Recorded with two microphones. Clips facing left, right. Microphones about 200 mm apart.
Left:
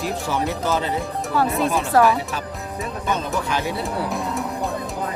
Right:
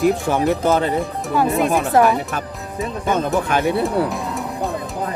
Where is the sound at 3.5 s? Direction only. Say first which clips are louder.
Right 6 dB; 55° right (ahead or behind).